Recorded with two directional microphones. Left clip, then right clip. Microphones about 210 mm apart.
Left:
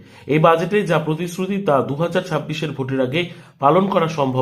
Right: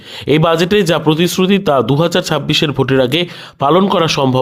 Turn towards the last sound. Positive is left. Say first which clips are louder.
# right 5 dB
turn(degrees=-40)  # may be behind; listen again after turning